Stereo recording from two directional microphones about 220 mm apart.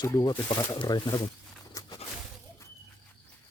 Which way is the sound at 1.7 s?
20° left (ahead or behind).